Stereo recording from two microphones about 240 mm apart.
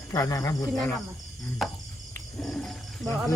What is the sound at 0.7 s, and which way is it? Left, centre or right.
Speech, centre.